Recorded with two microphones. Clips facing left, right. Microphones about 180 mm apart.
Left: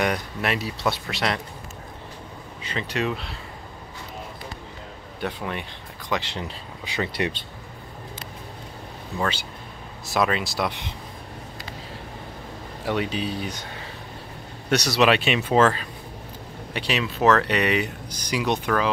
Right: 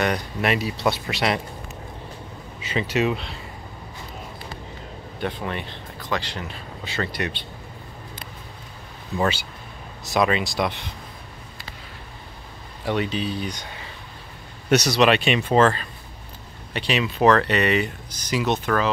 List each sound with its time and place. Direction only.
0.0 s speech: 5° left (ahead or behind)
2.6 s speech: 10° right (ahead or behind)
5.2 s speech: 5° left (ahead or behind)
7.1 s speech: 25° left (ahead or behind)
9.2 s speech: 10° right (ahead or behind)
12.8 s speech: 5° left (ahead or behind)
14.7 s speech: centre (ahead or behind)